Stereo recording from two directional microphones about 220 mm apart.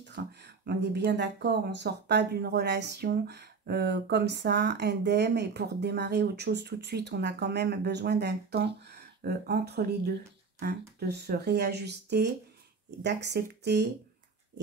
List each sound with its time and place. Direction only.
0.2 s speech: 45° right (ahead or behind)
11.0 s speech: 50° right (ahead or behind)